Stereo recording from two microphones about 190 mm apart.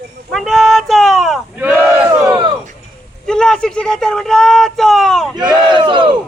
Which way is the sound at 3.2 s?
5° left (ahead or behind).